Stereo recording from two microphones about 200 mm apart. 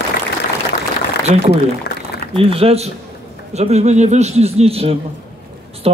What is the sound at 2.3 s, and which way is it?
A man's voice, 30° right (ahead or behind).